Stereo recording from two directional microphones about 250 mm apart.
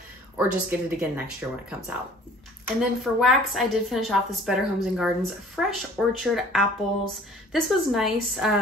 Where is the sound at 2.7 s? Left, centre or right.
Centre.